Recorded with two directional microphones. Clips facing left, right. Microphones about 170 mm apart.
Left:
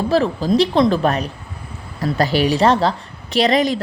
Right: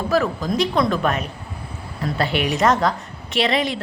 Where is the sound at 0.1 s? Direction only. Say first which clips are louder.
Left 4 dB; 30° left (ahead or behind).